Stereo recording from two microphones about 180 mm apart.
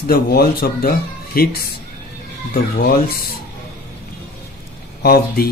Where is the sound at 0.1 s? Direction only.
55° left (ahead or behind).